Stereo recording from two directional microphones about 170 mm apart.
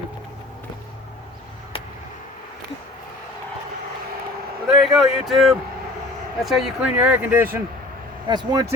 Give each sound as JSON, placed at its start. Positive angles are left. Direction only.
{"t": 4.7, "sound": "speech", "side_deg": 0}
{"t": 8.3, "sound": "speech", "side_deg": -25}